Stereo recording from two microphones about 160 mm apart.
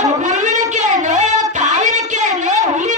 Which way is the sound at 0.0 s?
50° right (ahead or behind).